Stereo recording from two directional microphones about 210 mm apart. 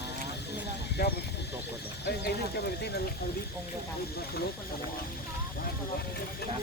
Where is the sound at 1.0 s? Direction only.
50° left (ahead or behind).